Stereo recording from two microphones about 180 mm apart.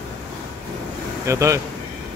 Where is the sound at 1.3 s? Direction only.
15° right (ahead or behind).